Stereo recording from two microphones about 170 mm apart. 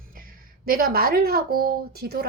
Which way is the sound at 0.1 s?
55° right (ahead or behind).